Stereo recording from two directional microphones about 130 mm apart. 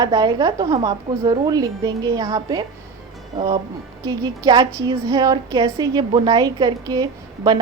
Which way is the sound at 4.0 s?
30° right (ahead or behind).